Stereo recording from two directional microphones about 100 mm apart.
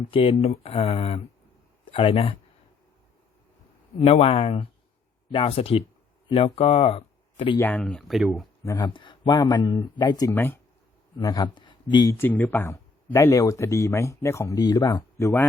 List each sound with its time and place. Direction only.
0.1 s speech: 65° left (ahead or behind); by 1.2 s 80° left
1.9 s speech: 60° left (ahead or behind)
4.0 s speech: 85° left
6.2 s speech: 60° left (ahead or behind); by 7.5 s 85° left
7.6 s speech: 15° left (ahead or behind)
8.8 s speech: 50° left (ahead or behind)
10.3 s speech: 20° left (ahead or behind)
11.2 s speech: 45° left (ahead or behind)
12.1 s speech: 20° left (ahead or behind)
13.1 s speech: 30° left (ahead or behind)